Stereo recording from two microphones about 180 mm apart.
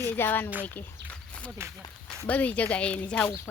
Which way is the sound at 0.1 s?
10° left (ahead or behind).